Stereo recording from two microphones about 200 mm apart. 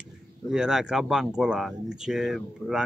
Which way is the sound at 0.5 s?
5° right (ahead or behind).